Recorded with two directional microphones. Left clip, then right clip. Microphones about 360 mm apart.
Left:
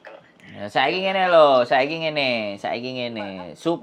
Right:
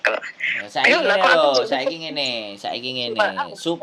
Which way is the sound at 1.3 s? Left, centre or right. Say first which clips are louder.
Left 3 dB; left.